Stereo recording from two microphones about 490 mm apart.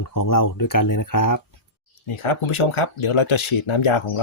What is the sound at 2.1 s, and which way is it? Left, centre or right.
Speech, left.